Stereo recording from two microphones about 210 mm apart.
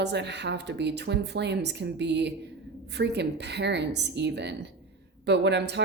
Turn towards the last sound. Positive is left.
turn(degrees=-55)  # may be behind; listen again after turning